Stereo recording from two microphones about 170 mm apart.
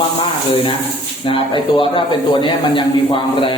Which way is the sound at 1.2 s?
30° left (ahead or behind).